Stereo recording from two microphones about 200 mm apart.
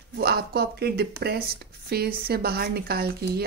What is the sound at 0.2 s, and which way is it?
Speech, 50° right (ahead or behind).